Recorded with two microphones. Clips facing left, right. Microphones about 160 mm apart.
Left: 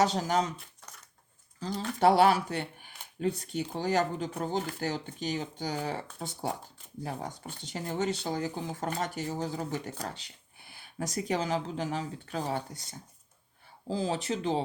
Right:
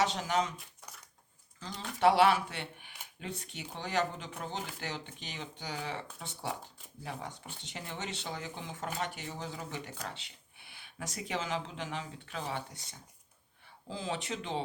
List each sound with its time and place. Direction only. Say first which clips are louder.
0.0 s speech: left 4 dB; 40° left (ahead or behind)
1.5 s speech: left 7 dB; 40° left (ahead or behind)